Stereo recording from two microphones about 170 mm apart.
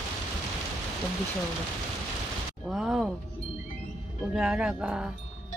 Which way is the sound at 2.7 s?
Centre (ahead or behind).